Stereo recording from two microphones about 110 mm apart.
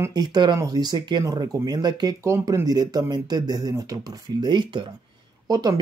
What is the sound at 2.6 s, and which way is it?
Speech, 35° right (ahead or behind).